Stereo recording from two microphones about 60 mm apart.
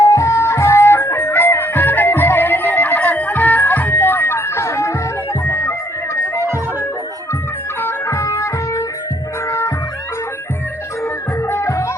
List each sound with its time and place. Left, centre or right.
0.0 s music: left
7.8 s music: left
11.0 s music: left